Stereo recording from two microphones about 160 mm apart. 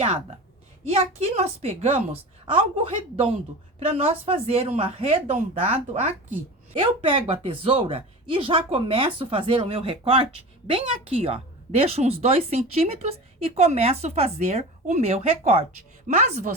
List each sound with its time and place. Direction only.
0.9 s a woman's voice: 40° right (ahead or behind)
6.7 s a woman's voice: 35° right (ahead or behind)
16.1 s a woman's voice: 55° right (ahead or behind)